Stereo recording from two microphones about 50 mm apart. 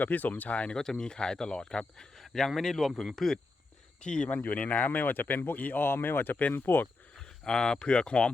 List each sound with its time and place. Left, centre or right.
0.0 s speech: left
0.8 s speech: centre
2.1 s a sound: centre
2.5 s speech: centre
4.3 s speech: left
4.9 s speech: left
5.5 s speech: left
5.8 s speech: left
7.2 s a sound: centre
7.8 s speech: centre